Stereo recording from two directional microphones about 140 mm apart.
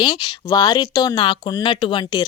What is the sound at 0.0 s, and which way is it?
Speech, 35° left (ahead or behind).